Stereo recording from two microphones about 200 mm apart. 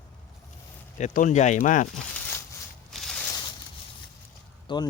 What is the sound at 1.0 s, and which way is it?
Speech, 40° left (ahead or behind).